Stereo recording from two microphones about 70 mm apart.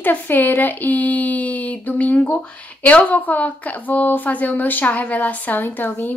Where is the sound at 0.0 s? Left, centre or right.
Left.